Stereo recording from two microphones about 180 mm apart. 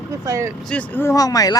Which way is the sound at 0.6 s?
10° left (ahead or behind).